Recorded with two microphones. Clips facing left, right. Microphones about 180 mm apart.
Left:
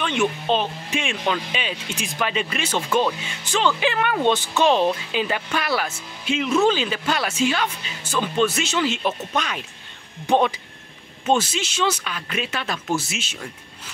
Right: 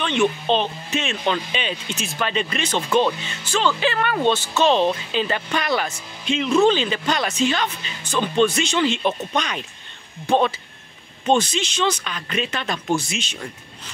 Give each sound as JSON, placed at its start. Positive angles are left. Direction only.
{"t": 0.0, "sound": "speech", "side_deg": 10}
{"t": 10.2, "sound": "speech", "side_deg": 15}